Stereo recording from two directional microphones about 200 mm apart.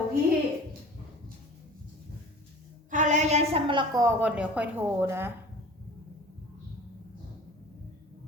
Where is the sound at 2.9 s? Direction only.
40° right (ahead or behind); by 4.1 s 20° right (ahead or behind).